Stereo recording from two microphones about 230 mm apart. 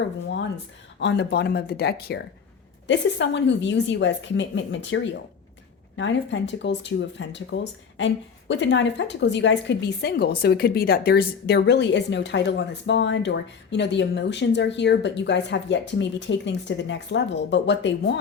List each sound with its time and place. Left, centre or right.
0.9 s speech: left
6.0 s speech: left